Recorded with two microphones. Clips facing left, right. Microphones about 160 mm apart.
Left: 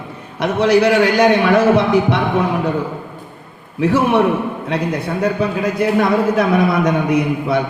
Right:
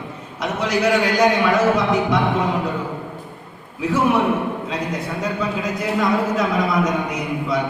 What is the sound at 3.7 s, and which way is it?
A man's voice, 65° left (ahead or behind).